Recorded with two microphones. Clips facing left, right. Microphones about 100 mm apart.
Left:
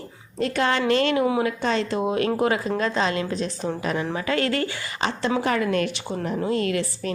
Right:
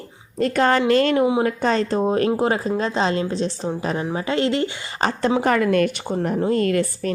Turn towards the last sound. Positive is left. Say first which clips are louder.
# right 5 dB
turn(degrees=-45)  # may be behind; listen again after turning